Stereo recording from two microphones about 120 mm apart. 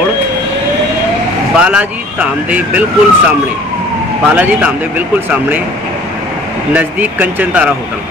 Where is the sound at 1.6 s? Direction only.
10° right (ahead or behind).